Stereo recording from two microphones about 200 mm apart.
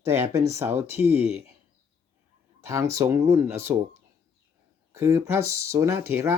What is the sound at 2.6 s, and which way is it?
Speech, 15° right (ahead or behind).